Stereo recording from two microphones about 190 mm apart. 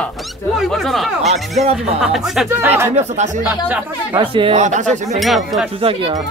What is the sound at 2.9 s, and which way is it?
Speech, 35° right (ahead or behind).